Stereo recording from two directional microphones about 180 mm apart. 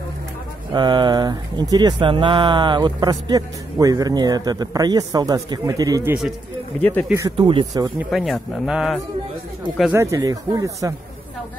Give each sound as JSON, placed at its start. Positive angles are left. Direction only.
{"t": 0.7, "sound": "speech", "side_deg": -25}
{"t": 6.8, "sound": "speech", "side_deg": 10}
{"t": 7.3, "sound": "speech", "side_deg": -30}
{"t": 8.1, "sound": "speech", "side_deg": 0}
{"t": 9.9, "sound": "speech", "side_deg": -20}